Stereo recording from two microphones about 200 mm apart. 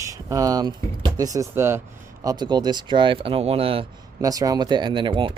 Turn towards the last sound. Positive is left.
turn(degrees=-25)  # may be behind; listen again after turning